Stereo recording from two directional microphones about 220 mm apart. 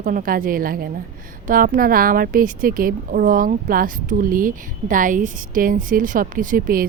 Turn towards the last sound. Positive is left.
turn(degrees=-40)  # may be behind; listen again after turning